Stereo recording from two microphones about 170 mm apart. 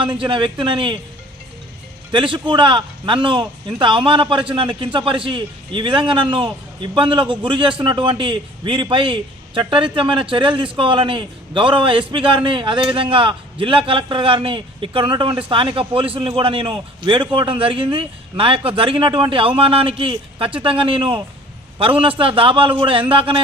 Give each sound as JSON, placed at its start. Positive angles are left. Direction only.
{"t": 0.0, "sound": "a man's voice", "side_deg": -30}
{"t": 2.1, "sound": "a man's voice", "side_deg": -30}